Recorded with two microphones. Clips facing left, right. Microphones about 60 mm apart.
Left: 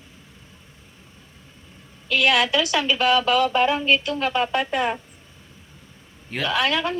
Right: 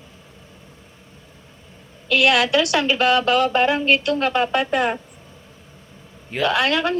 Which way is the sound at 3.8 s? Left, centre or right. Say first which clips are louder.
Right 3 dB; right.